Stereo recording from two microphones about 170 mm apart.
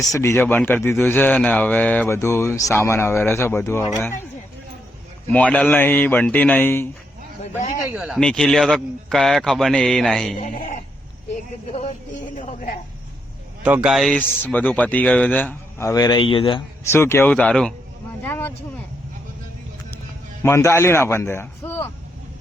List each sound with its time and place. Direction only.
0.1 s a man's voice: 15° left (ahead or behind)
5.3 s a man's voice: 10° left (ahead or behind)
7.9 s speech: 5° right (ahead or behind)
8.2 s a man's voice: 5° left (ahead or behind)
11.7 s a woman's voice: 40° left (ahead or behind)
13.7 s a man's voice: 5° right (ahead or behind); by 16.6 s 30° left (ahead or behind)
16.9 s a man's voice: 15° left (ahead or behind)
20.4 s a man's voice: 15° left (ahead or behind)